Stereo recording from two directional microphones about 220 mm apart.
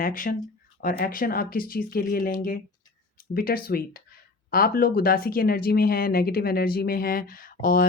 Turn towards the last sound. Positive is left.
turn(degrees=40)  # may be behind; listen again after turning